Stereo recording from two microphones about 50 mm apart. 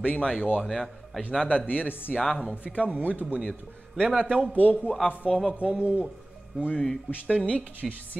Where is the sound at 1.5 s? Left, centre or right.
Left.